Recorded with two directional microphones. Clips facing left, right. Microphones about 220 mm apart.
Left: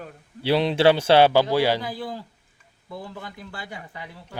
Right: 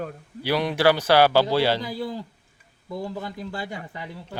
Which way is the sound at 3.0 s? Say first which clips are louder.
Right 8 dB; 40° right (ahead or behind).